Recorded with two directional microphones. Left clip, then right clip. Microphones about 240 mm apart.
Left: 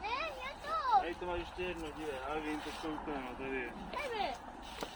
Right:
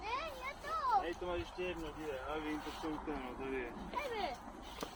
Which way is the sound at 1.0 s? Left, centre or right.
Centre.